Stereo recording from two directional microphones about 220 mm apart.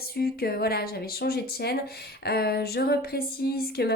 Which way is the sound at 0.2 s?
45° left (ahead or behind).